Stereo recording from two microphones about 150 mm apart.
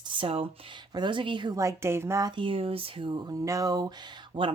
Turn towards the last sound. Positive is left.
turn(degrees=-35)  # may be behind; listen again after turning